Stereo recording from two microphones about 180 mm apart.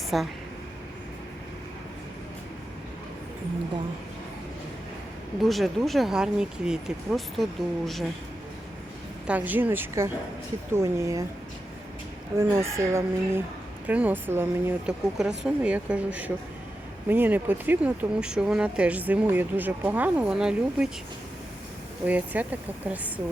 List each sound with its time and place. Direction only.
0.1 s speech: centre (ahead or behind)
5.4 s speech: centre (ahead or behind)
9.2 s speech: 10° right (ahead or behind)
12.4 s speech: 15° right (ahead or behind)
22.0 s speech: 10° right (ahead or behind)